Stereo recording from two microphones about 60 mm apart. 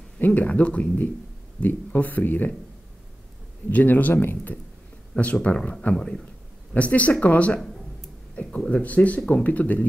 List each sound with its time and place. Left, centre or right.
0.2 s speech: left
3.7 s speech: left
5.1 s speech: left
6.7 s speech: left